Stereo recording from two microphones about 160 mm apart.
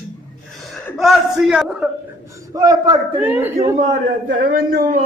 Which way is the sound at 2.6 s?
25° right (ahead or behind).